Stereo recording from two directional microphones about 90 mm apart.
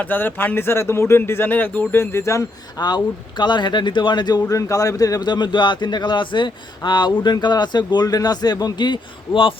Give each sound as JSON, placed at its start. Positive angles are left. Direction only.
{"t": 0.0, "sound": "speech", "side_deg": 20}
{"t": 2.8, "sound": "speech", "side_deg": 55}
{"t": 4.4, "sound": "speech", "side_deg": 40}